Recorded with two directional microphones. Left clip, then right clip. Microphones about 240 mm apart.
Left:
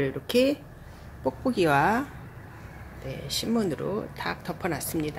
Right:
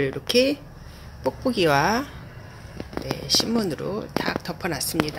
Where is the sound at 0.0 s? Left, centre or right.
Centre.